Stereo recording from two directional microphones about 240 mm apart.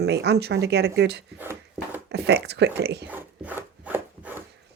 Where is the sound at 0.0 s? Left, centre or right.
Right.